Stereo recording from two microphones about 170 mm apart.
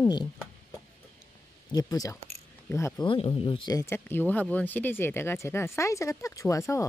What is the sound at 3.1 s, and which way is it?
Speech, 30° left (ahead or behind).